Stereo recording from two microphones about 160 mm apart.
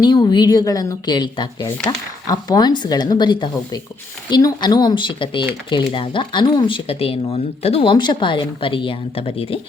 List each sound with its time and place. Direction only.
0.0 s speech: 25° left (ahead or behind)